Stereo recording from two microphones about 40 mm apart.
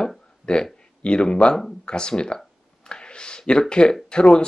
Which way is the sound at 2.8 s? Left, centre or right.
Left.